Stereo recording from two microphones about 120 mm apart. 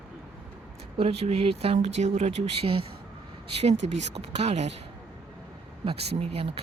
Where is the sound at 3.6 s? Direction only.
65° right (ahead or behind).